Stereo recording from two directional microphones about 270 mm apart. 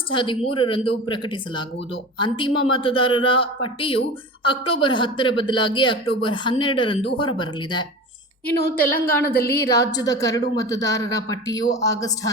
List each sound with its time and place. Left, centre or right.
0.1 s a woman's voice: centre